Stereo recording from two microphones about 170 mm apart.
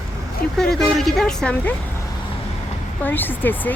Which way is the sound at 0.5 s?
5° left (ahead or behind).